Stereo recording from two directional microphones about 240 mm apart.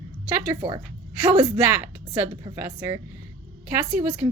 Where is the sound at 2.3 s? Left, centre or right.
Centre.